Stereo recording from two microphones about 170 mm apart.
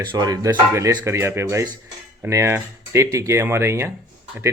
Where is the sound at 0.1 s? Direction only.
20° right (ahead or behind).